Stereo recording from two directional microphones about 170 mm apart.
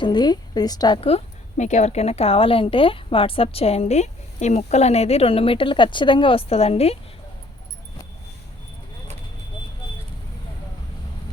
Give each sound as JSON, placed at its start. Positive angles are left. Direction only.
{"t": 0.0, "sound": "speech", "side_deg": 25}
{"t": 1.0, "sound": "a woman's voice", "side_deg": 40}